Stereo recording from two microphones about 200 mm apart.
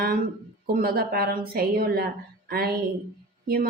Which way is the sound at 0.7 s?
50° right (ahead or behind).